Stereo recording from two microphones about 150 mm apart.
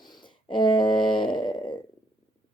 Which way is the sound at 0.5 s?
30° left (ahead or behind).